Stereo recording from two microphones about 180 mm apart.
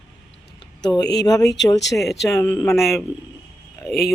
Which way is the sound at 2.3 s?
15° left (ahead or behind).